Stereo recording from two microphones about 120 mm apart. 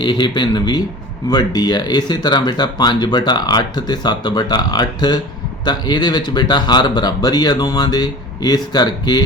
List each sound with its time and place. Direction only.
0.0 s speech: 40° left (ahead or behind)